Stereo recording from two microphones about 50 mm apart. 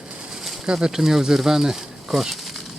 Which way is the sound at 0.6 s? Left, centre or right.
Centre.